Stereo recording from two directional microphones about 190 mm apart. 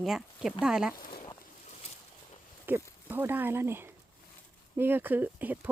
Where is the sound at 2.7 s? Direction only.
10° right (ahead or behind).